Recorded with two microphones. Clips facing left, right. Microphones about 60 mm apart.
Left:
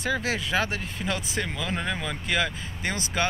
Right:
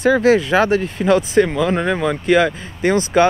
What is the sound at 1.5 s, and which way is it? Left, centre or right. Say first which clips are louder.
Speech: right 12 dB; right.